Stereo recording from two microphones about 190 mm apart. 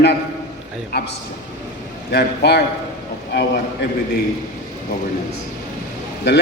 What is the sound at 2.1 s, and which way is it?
Speech, 60° left (ahead or behind).